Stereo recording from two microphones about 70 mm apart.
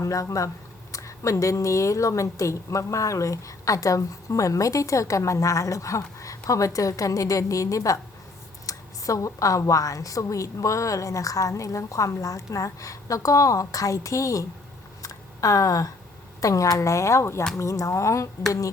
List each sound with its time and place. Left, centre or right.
0.0 s a woman's voice: left
15.0 s a sound: left
16.4 s a woman's voice: left